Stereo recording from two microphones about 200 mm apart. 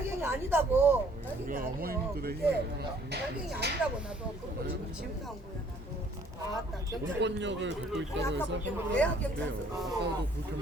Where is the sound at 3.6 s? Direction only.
55° right (ahead or behind).